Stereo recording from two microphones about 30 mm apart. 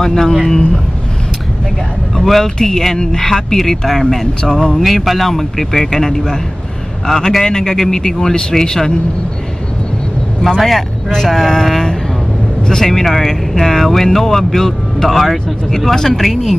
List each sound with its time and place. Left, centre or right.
0.0 s speech: centre
2.2 s speech: centre
4.4 s speech: left
4.7 s speech: centre; by 8.9 s left
11.1 s speech: centre
15.8 s speech: centre